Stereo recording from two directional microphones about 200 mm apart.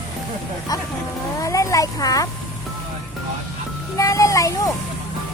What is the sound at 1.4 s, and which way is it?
Speech, 15° left (ahead or behind).